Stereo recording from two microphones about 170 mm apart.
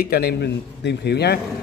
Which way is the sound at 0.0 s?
70° left (ahead or behind).